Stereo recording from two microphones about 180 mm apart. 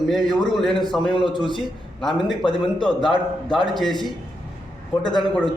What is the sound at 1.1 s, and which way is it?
Speech, 25° left (ahead or behind).